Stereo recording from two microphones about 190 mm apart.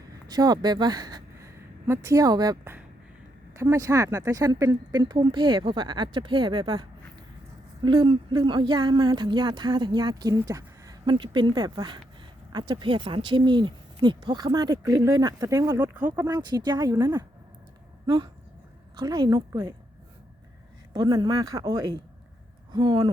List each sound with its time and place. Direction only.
0.3 s a woman's voice: 20° right (ahead or behind)
20.9 s speech: 20° right (ahead or behind)